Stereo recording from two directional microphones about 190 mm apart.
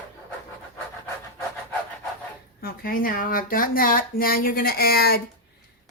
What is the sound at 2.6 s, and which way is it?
Speech, 50° left (ahead or behind).